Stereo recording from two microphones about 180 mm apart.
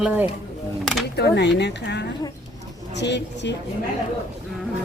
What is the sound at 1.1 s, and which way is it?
Speech, 70° left (ahead or behind).